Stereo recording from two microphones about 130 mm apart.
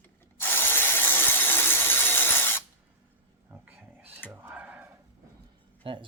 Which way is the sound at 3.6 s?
15° right (ahead or behind).